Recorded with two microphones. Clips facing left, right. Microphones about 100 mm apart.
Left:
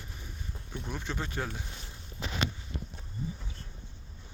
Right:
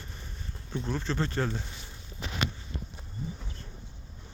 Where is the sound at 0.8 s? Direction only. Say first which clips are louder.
Right 6 dB; 10° left (ahead or behind).